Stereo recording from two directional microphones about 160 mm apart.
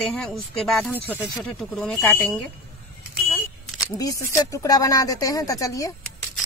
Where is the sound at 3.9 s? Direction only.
20° left (ahead or behind).